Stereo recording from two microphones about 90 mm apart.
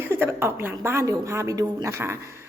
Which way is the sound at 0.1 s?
25° right (ahead or behind).